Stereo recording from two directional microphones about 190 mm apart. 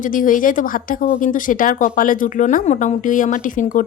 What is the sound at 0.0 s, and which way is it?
Speech, 45° left (ahead or behind).